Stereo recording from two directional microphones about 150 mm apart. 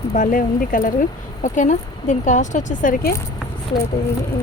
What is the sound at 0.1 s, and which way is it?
Speech, 60° left (ahead or behind).